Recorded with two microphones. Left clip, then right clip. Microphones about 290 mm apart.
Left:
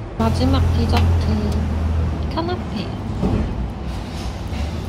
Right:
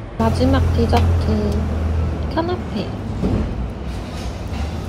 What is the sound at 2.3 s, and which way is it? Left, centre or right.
A woman's voice, centre.